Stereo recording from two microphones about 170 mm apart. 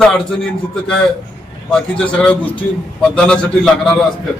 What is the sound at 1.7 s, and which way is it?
A man's voice, 5° left (ahead or behind).